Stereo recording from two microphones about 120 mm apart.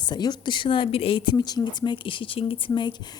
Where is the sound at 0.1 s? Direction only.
35° left (ahead or behind).